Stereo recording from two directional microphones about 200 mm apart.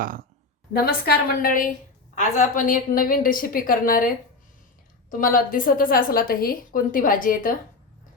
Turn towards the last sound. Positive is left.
turn(degrees=45)  # may be behind; listen again after turning